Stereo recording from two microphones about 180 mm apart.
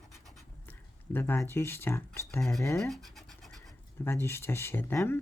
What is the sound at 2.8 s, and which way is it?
Scratch, centre (ahead or behind).